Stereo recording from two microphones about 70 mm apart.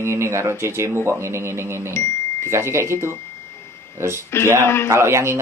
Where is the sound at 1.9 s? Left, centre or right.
Left.